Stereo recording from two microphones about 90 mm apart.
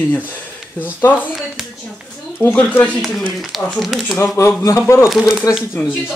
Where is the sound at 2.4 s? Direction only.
20° left (ahead or behind).